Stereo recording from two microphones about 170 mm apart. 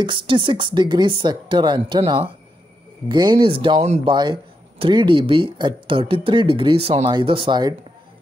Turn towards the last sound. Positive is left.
turn(degrees=-25)  # may be behind; listen again after turning